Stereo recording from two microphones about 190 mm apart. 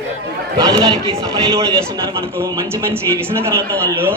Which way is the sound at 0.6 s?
20° right (ahead or behind).